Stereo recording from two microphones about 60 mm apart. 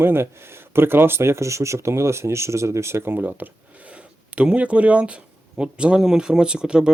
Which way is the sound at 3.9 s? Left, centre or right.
Centre.